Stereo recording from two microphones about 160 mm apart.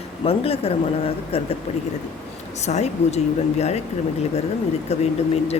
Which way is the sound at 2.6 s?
45° left (ahead or behind).